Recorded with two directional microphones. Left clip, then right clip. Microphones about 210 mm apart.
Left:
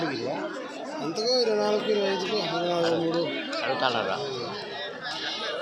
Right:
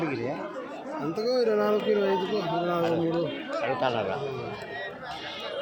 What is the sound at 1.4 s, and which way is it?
Speech, 50° right (ahead or behind).